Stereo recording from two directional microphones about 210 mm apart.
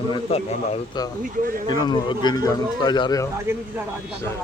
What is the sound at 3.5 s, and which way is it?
Speech, 10° right (ahead or behind).